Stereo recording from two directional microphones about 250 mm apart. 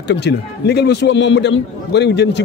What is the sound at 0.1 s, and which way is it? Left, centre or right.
A man's voice, left.